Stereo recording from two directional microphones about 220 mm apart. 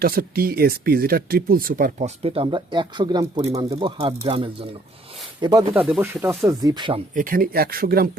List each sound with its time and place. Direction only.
0.0 s speech: 40° right (ahead or behind); by 7.0 s 20° right (ahead or behind)
7.1 s speech: 40° right (ahead or behind)